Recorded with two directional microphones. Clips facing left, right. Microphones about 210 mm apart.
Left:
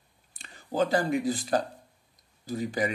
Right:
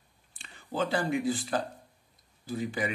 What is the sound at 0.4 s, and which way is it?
Speech, 40° left (ahead or behind).